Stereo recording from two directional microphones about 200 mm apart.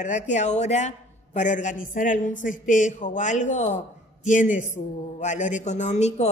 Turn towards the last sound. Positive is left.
turn(degrees=35)  # may be behind; listen again after turning